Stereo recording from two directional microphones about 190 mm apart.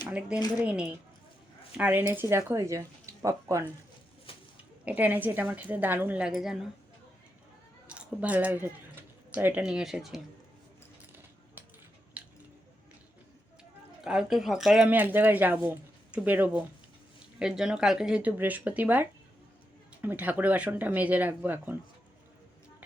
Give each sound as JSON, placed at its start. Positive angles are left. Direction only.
{"t": 0.1, "sound": "speech", "side_deg": -5}
{"t": 4.3, "sound": "pig", "side_deg": 30}
{"t": 4.9, "sound": "speech", "side_deg": -10}
{"t": 7.9, "sound": "speech", "side_deg": -5}
{"t": 12.2, "sound": "squish", "side_deg": -5}
{"t": 14.0, "sound": "speech", "side_deg": -5}